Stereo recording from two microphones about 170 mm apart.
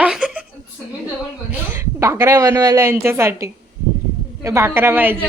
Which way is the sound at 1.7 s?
15° right (ahead or behind).